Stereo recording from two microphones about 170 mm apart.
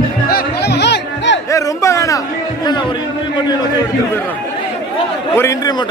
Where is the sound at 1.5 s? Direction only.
20° left (ahead or behind).